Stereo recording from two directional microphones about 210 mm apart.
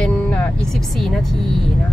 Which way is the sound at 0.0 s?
5° left (ahead or behind).